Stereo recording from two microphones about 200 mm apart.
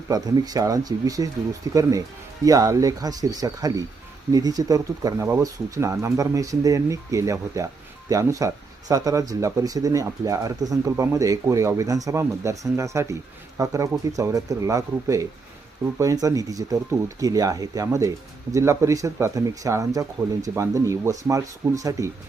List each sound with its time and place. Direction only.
0.1 s speech: 20° right (ahead or behind)